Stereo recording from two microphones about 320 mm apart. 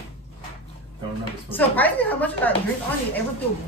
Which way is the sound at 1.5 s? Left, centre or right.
Centre.